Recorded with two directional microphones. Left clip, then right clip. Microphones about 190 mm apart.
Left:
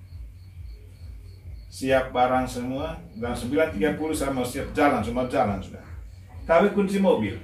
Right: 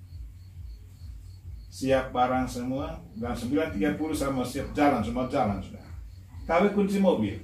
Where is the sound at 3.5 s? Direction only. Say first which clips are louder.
Left 5 dB; 15° left (ahead or behind).